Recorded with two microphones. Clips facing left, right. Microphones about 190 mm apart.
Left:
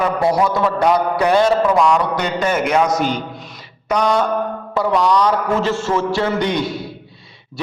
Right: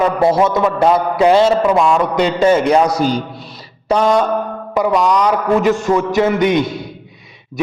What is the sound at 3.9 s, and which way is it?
A man's voice, 25° right (ahead or behind).